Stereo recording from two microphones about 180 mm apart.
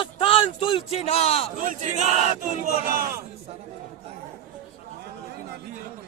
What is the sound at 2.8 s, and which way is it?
Speech, 55° right (ahead or behind).